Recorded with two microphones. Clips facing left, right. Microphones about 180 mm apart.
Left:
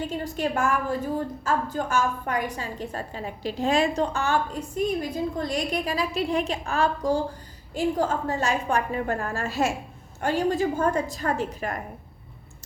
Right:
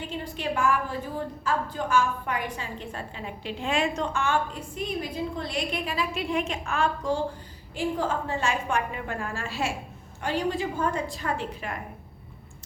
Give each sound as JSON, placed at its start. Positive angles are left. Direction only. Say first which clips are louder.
{"t": 0.1, "sound": "a woman's voice", "louder": "left 4 dB", "side_deg": 45}